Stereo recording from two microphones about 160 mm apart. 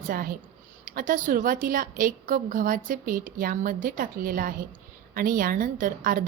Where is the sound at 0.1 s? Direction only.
60° right (ahead or behind).